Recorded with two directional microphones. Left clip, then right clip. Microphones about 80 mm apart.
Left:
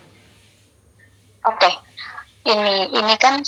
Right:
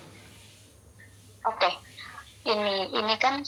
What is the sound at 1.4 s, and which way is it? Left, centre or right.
A woman's voice, left.